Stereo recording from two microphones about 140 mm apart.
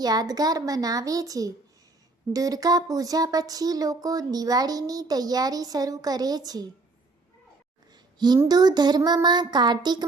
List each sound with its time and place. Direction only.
0.0 s speech: 30° right (ahead or behind)
8.4 s speech: 30° right (ahead or behind)